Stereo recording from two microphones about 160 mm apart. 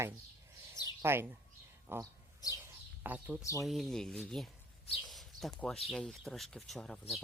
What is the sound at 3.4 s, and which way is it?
Speech, 20° left (ahead or behind).